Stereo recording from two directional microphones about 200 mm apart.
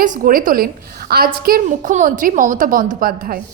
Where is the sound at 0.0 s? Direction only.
40° right (ahead or behind).